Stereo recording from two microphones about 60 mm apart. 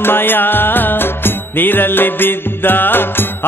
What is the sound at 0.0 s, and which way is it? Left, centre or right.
Music, left.